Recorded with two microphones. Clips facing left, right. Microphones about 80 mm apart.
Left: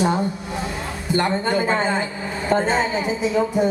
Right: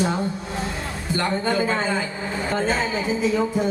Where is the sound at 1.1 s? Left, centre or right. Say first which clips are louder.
Left 2 dB; left.